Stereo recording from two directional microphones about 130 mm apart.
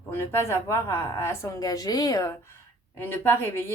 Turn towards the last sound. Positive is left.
turn(degrees=15)  # may be behind; listen again after turning